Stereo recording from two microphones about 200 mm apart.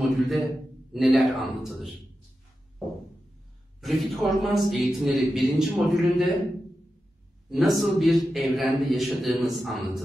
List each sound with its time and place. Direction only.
0.0 s a man's voice: centre (ahead or behind)
3.8 s a man's voice: centre (ahead or behind)
7.4 s a man's voice: centre (ahead or behind)